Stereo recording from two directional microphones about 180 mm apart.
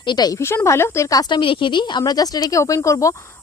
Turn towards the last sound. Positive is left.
turn(degrees=15)  # may be behind; listen again after turning